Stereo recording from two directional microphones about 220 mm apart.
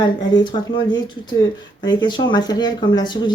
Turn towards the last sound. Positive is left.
turn(degrees=20)  # may be behind; listen again after turning